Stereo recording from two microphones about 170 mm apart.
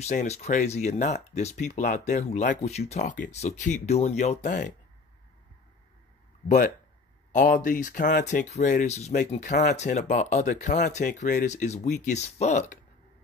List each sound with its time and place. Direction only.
0.0 s speech: 40° left (ahead or behind)
7.3 s speech: 50° left (ahead or behind)